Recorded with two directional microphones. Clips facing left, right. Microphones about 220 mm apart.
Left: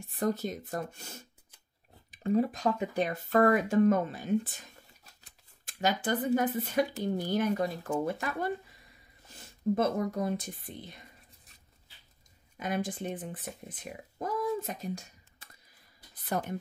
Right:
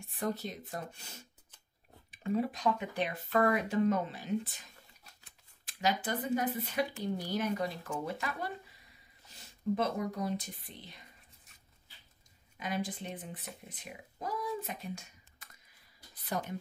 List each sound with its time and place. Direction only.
0.2 s speech: 45° left (ahead or behind)
12.5 s speech: 50° left (ahead or behind)
16.3 s speech: 50° left (ahead or behind)